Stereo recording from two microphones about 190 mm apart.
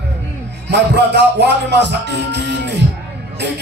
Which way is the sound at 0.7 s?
60° right (ahead or behind).